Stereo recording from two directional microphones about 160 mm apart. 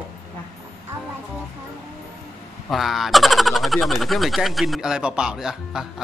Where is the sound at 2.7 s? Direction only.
Centre (ahead or behind).